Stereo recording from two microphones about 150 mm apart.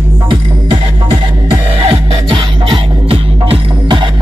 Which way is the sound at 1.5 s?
35° right (ahead or behind).